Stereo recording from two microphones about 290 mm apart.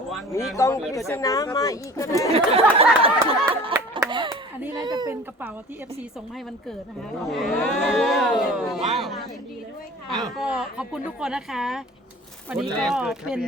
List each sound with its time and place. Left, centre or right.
0.5 s speech: centre
2.3 s speech: centre
3.7 s a sound: centre
7.3 s speech: centre
10.3 s speech: centre